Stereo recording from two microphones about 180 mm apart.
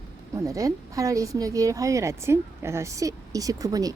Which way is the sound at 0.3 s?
20° right (ahead or behind).